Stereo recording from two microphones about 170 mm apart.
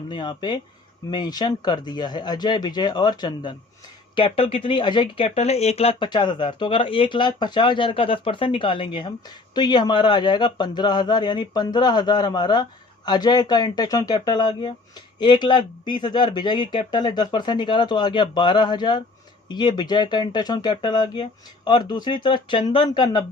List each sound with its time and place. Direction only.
0.1 s speech: 25° left (ahead or behind)